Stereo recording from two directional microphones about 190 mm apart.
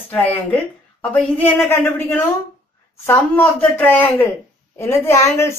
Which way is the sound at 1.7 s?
10° left (ahead or behind).